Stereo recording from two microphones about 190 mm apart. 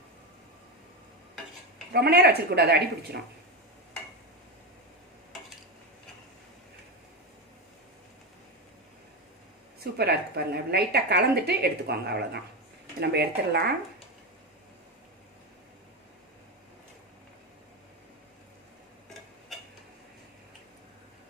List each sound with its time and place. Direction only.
1.9 s speech: 55° right (ahead or behind)
10.0 s speech: 55° right (ahead or behind)